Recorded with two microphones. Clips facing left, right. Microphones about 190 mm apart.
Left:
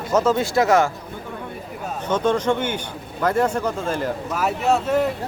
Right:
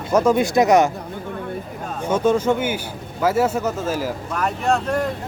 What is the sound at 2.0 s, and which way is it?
A man's voice, 10° right (ahead or behind).